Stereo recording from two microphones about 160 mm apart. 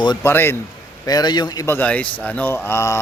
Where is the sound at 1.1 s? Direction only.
25° left (ahead or behind).